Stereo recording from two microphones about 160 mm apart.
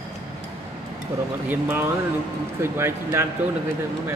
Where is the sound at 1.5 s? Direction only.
15° right (ahead or behind).